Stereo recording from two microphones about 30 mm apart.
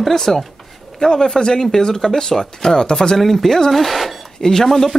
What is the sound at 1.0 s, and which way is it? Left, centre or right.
Speech, left.